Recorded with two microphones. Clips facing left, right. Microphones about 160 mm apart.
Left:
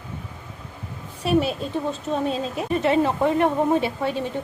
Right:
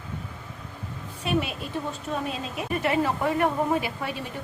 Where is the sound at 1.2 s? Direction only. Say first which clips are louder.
Left 6 dB; 35° left (ahead or behind).